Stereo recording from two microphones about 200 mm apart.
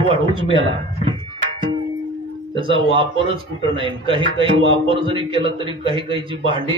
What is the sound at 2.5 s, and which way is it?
Speech, 25° right (ahead or behind).